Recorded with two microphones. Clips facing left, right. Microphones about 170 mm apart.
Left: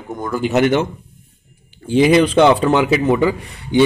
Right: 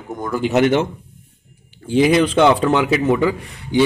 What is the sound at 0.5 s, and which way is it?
Speech, 25° right (ahead or behind).